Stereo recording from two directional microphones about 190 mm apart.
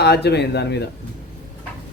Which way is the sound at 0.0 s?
60° left (ahead or behind).